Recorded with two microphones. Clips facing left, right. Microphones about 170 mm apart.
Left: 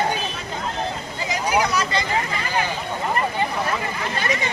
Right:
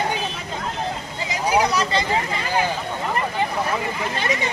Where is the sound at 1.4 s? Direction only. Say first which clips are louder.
Right 2 dB; 30° right (ahead or behind).